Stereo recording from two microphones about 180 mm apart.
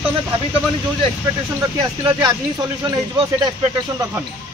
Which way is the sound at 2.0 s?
20° right (ahead or behind).